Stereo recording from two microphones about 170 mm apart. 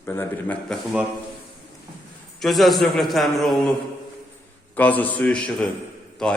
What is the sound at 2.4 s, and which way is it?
A man's voice, centre (ahead or behind).